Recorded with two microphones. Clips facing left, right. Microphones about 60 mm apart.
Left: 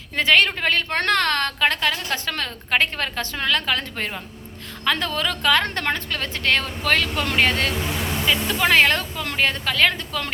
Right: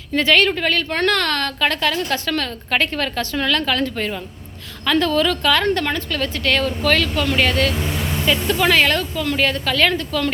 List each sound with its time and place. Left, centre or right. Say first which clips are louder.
0.2 s a woman's voice: right 2 dB; left